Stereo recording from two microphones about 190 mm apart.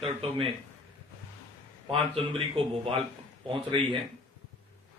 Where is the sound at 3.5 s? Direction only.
25° right (ahead or behind).